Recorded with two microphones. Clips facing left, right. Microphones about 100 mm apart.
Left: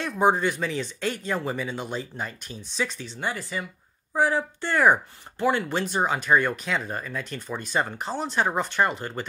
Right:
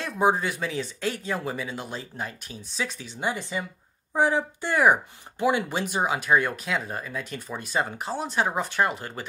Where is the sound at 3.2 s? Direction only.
20° right (ahead or behind).